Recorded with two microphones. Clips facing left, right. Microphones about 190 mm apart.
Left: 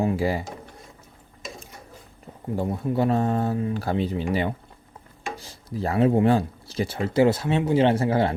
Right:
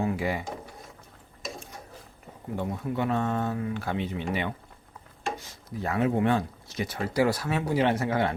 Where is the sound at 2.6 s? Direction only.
30° left (ahead or behind).